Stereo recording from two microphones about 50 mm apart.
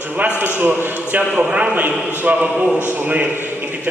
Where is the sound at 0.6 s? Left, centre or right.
Right.